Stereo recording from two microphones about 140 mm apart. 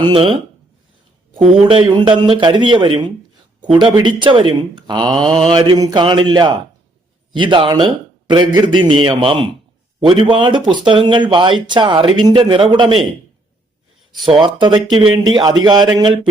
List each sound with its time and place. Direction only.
0.0 s speech: 40° right (ahead or behind)
1.7 s speech: 35° right (ahead or behind)
14.3 s speech: 35° right (ahead or behind)